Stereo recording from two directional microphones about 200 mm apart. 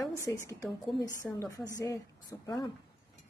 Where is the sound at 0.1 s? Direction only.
15° left (ahead or behind).